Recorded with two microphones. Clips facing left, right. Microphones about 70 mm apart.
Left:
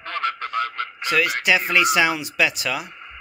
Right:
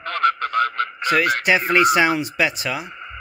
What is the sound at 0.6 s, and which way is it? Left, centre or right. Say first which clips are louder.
Radio: right 8 dB; right.